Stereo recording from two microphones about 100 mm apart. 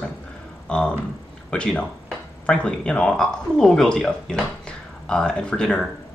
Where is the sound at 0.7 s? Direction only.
10° left (ahead or behind).